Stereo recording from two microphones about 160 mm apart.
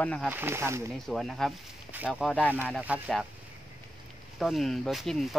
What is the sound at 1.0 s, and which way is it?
Speech, centre (ahead or behind).